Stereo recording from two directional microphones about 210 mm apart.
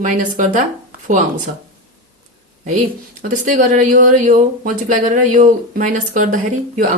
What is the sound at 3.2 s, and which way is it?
Speech, 40° right (ahead or behind).